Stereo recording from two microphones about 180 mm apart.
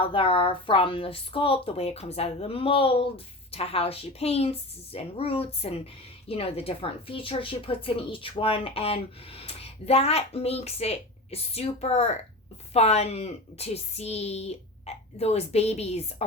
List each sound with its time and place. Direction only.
0.0 s a woman's voice: 30° left (ahead or behind)